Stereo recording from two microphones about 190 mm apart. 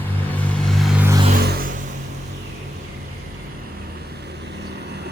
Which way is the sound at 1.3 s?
55° right (ahead or behind).